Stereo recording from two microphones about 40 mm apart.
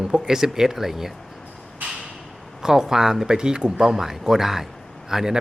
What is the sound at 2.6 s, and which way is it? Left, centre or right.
Speech, centre.